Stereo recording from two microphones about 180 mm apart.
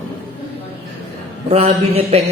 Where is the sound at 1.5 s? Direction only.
35° right (ahead or behind).